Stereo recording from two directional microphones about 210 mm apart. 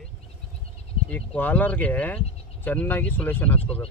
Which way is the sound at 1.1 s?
5° left (ahead or behind).